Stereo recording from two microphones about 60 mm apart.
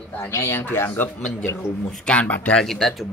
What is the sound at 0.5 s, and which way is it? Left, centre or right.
Speech, left.